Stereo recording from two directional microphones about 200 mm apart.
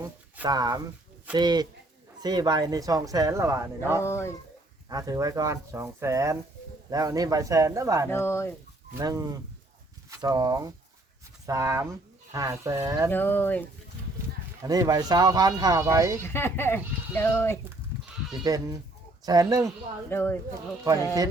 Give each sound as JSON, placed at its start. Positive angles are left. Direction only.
{"t": 0.0, "sound": "a sound", "side_deg": -20}
{"t": 1.3, "sound": "speech", "side_deg": -20}
{"t": 4.0, "sound": "speech", "side_deg": 15}
{"t": 4.9, "sound": "speech", "side_deg": -20}
{"t": 8.1, "sound": "speech", "side_deg": 15}
{"t": 9.0, "sound": "speech", "side_deg": -20}
{"t": 13.1, "sound": "speech", "side_deg": 10}
{"t": 14.6, "sound": "speech", "side_deg": -15}
{"t": 16.2, "sound": "speech", "side_deg": 10}
{"t": 18.3, "sound": "speech", "side_deg": -15}
{"t": 20.1, "sound": "speech", "side_deg": 10}
{"t": 20.5, "sound": "speech", "side_deg": -15}